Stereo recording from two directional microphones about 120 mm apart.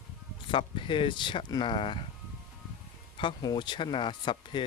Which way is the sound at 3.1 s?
40° left (ahead or behind).